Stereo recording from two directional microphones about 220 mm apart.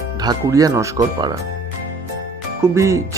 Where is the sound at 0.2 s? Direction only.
15° right (ahead or behind).